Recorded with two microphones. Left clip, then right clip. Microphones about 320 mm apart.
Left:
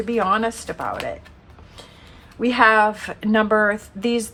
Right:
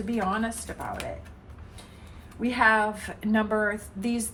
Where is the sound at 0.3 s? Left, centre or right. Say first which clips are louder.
Left 9 dB; centre.